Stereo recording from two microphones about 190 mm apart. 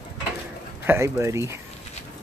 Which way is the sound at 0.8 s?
15° right (ahead or behind).